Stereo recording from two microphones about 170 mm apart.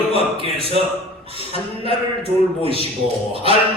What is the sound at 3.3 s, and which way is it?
Speech, 35° right (ahead or behind).